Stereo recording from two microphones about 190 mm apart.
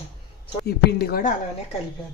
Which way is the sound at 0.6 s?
55° left (ahead or behind).